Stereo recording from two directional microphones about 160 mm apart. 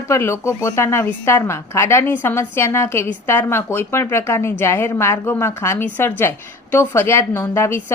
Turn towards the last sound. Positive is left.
turn(degrees=15)  # may be behind; listen again after turning